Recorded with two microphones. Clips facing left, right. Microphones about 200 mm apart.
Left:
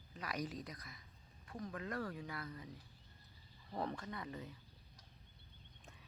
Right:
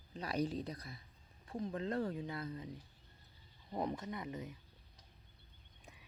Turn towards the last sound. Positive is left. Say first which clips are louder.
# right 4 dB
turn(degrees=-20)  # may be behind; listen again after turning